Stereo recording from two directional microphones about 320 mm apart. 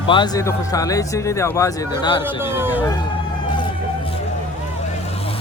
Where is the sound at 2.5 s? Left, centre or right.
Centre.